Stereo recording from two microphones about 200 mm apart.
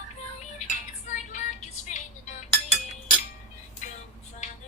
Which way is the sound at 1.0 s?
35° left (ahead or behind).